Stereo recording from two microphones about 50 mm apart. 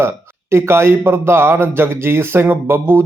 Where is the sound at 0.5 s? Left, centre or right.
Right.